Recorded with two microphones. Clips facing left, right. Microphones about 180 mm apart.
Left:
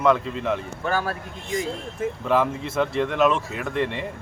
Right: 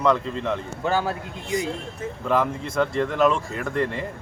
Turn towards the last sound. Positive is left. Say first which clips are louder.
# even
turn(degrees=0)  # may be behind; listen again after turning